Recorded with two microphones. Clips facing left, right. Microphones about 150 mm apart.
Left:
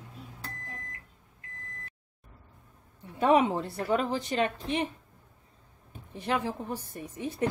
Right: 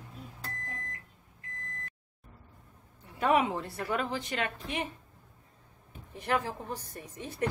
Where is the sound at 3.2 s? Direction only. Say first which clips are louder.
Left 4 dB; 30° left (ahead or behind).